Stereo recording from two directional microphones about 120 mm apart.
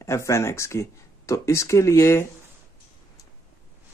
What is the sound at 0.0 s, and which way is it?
Speech, 25° left (ahead or behind).